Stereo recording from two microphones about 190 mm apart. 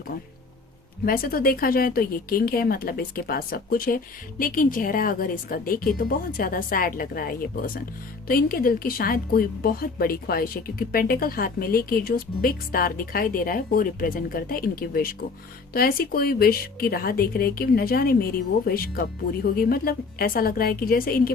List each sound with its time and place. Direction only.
1.0 s a woman's voice: 50° left (ahead or behind)